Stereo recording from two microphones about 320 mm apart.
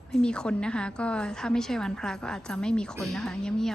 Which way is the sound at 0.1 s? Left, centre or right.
Centre.